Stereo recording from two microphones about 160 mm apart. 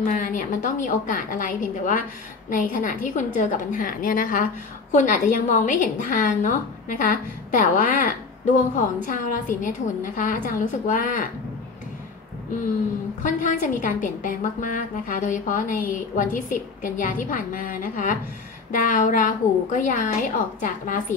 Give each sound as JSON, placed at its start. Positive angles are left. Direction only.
{"t": 0.0, "sound": "a woman's voice", "side_deg": 55}
{"t": 13.2, "sound": "a woman's voice", "side_deg": 50}